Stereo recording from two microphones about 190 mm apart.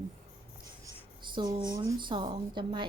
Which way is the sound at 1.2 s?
25° right (ahead or behind).